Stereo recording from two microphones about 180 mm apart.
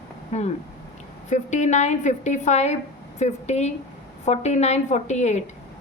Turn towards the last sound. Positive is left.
turn(degrees=40)  # may be behind; listen again after turning